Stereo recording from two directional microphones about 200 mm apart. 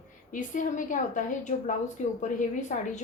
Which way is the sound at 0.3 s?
40° left (ahead or behind).